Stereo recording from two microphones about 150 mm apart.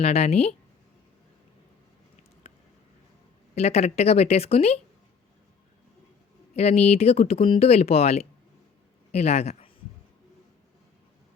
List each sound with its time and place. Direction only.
0.0 s speech: 45° left (ahead or behind)
3.5 s speech: 45° left (ahead or behind)
6.6 s speech: 45° left (ahead or behind)